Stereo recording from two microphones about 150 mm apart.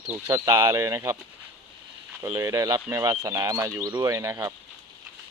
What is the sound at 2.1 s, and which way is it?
Speech, 20° right (ahead or behind).